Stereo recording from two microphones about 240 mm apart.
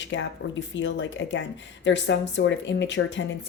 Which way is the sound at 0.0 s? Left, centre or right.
Left.